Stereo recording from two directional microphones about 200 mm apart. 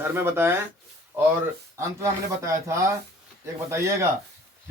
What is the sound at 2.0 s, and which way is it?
A man's voice, 15° right (ahead or behind).